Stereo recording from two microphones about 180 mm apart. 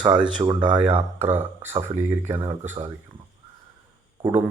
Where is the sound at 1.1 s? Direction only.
10° right (ahead or behind).